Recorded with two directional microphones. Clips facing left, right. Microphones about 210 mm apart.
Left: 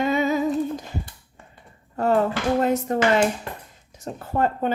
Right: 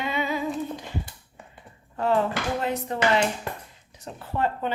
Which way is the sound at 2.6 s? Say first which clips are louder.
Left 3 dB; 45° left (ahead or behind).